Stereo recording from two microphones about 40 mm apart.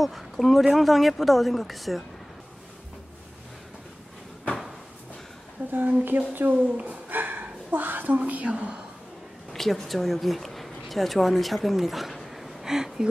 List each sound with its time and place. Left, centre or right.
0.0 s a woman's voice: centre
5.7 s speech: right
7.1 s a sound: right
8.2 s a woman's voice: right
8.5 s a woman's voice: right
9.5 s a woman's voice: centre
11.8 s a sound: centre
12.7 s speech: centre